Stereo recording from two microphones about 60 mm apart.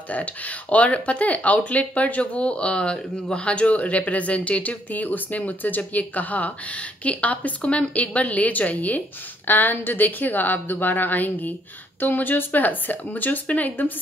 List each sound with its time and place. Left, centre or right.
0.1 s a woman's voice: left